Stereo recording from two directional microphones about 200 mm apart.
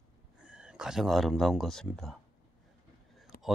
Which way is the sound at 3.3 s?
50° left (ahead or behind).